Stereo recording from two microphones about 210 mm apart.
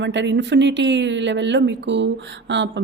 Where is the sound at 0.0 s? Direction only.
60° right (ahead or behind).